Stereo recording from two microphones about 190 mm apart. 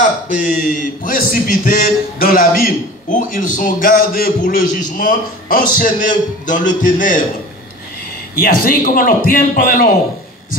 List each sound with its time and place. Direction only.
0.0 s a man's voice: 40° left (ahead or behind)
8.4 s a man's voice: 50° left (ahead or behind)